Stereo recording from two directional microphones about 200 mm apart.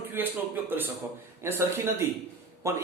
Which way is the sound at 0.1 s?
10° right (ahead or behind).